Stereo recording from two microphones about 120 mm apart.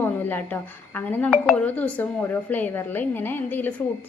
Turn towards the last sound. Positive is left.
turn(degrees=15)  # may be behind; listen again after turning